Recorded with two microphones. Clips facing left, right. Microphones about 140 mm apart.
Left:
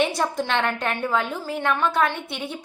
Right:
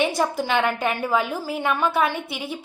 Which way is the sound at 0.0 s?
Centre (ahead or behind).